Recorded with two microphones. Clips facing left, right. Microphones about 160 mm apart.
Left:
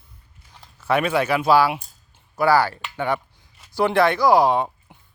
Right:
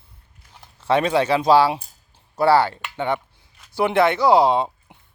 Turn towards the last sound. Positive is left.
turn(degrees=-20)  # may be behind; listen again after turning